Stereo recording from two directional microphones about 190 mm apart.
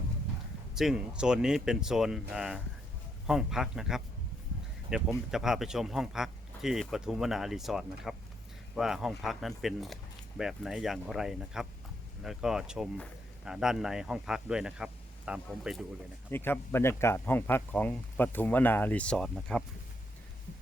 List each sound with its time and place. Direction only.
0.8 s a man's voice: 5° right (ahead or behind)
16.3 s speech: 10° left (ahead or behind)